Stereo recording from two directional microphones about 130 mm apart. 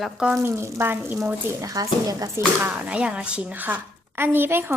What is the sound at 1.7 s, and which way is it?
Speech, 30° right (ahead or behind).